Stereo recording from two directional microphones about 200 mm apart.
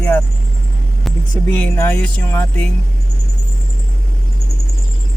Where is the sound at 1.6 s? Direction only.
10° left (ahead or behind).